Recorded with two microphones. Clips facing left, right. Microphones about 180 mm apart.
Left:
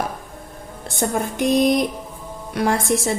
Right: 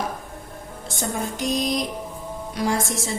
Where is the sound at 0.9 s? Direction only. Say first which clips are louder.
Left 5 dB; 60° left (ahead or behind).